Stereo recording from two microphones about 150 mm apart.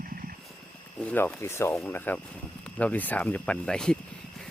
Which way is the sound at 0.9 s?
10° left (ahead or behind).